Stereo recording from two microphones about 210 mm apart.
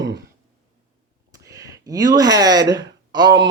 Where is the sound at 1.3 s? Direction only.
15° right (ahead or behind).